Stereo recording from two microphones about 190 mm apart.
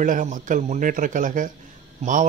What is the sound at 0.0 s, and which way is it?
A man's voice, 45° right (ahead or behind).